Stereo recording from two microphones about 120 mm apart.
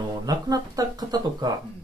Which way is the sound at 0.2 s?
35° right (ahead or behind).